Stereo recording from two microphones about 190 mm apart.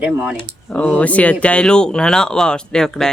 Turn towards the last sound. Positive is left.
turn(degrees=5)  # may be behind; listen again after turning